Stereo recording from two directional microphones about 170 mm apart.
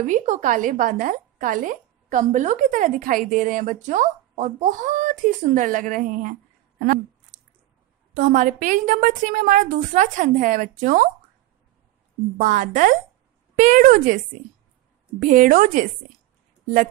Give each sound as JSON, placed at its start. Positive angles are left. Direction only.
{"t": 0.0, "sound": "a woman's voice", "side_deg": -45}
{"t": 6.8, "sound": "a sound", "side_deg": -55}
{"t": 8.1, "sound": "a woman's voice", "side_deg": -50}
{"t": 12.4, "sound": "a woman's voice", "side_deg": -50}